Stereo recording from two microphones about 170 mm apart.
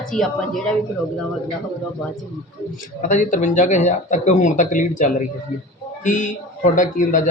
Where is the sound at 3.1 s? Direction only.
50° left (ahead or behind).